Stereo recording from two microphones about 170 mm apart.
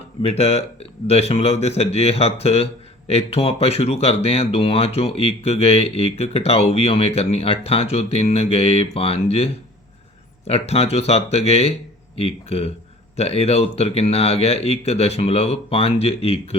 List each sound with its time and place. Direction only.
0.2 s speech: 35° left (ahead or behind)